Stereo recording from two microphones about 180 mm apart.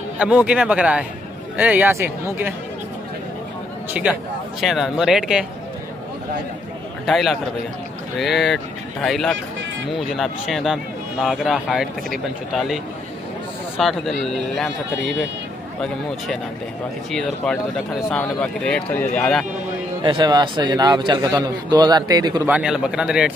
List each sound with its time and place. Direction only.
0.2 s a man's voice: 5° right (ahead or behind)
3.9 s speech: 5° right (ahead or behind)
7.1 s speech: centre (ahead or behind)
17.1 s a man's voice: 5° left (ahead or behind)
20.0 s a man's voice: 25° right (ahead or behind)
22.5 s speech: 5° right (ahead or behind)